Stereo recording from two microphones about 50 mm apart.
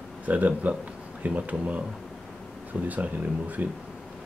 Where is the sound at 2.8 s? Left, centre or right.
Right.